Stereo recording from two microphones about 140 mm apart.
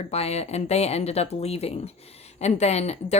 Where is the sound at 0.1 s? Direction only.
50° left (ahead or behind).